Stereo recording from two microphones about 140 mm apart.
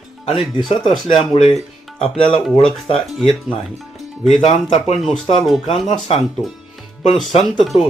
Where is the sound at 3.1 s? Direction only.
Centre (ahead or behind).